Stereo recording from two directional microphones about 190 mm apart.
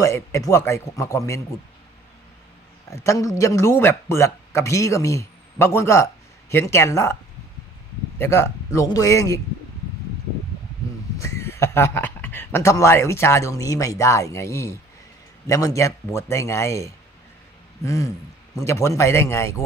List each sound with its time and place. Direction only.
0.0 s speech: 15° left (ahead or behind)
2.9 s speech: 15° left (ahead or behind)
8.2 s speech: 15° left (ahead or behind)
11.1 s speech: 15° left (ahead or behind)